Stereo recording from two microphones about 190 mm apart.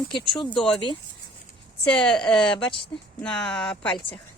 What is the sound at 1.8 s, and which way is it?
A woman's voice, 5° left (ahead or behind).